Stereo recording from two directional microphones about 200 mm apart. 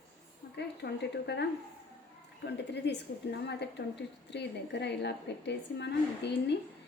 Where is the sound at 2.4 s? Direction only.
60° left (ahead or behind).